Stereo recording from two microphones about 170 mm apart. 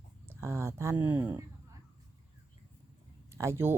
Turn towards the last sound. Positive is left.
turn(degrees=-15)  # may be behind; listen again after turning